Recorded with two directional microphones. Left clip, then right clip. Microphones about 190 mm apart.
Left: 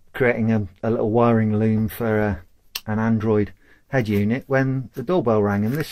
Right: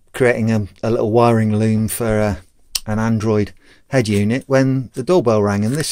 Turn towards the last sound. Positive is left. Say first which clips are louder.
# right 4 dB
turn(degrees=-40)  # may be behind; listen again after turning